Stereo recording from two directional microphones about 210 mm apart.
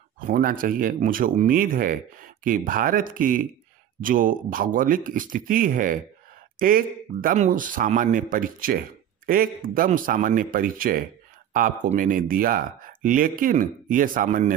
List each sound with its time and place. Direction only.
0.3 s speech: 40° right (ahead or behind)